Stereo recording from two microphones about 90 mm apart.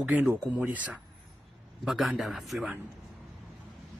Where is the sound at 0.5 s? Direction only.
20° right (ahead or behind).